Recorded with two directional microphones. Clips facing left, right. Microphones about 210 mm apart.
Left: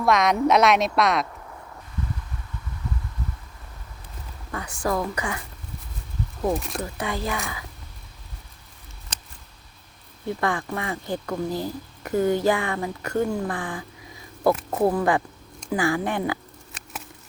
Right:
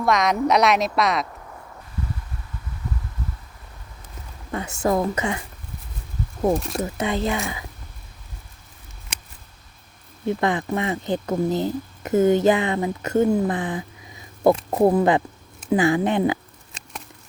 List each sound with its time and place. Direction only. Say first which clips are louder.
0.0 s a woman's voice: even; centre (ahead or behind)
4.5 s speech: right 4 dB; 25° right (ahead or behind)
6.5 s a woman's voice: right 4 dB; centre (ahead or behind)
6.8 s speech: right 5 dB; 20° right (ahead or behind)
10.2 s speech: right 4 dB; 20° right (ahead or behind)